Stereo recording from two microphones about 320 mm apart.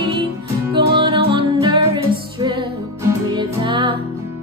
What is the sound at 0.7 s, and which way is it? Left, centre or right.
Music, centre.